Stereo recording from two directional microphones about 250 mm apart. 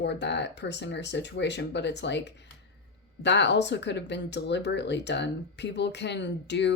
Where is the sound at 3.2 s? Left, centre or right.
Left.